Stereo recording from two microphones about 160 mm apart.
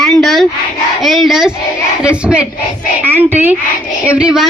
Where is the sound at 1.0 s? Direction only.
Centre (ahead or behind).